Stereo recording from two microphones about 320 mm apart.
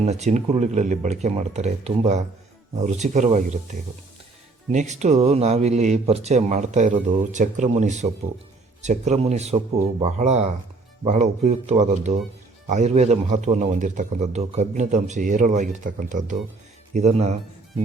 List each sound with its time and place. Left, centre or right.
0.0 s a man's voice: right